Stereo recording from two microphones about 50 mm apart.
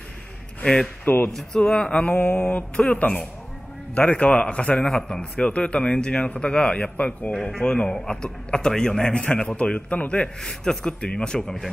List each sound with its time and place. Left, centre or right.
1.0 s speech: left
1.6 s a man's voice: centre
2.1 s mantra: left
2.7 s a man's voice: left
4.7 s a man's voice: centre
5.3 s a man's voice: left
7.5 s a man's voice: centre